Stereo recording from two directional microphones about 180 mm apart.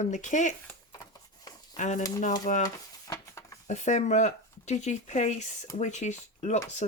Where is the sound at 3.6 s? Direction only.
40° left (ahead or behind).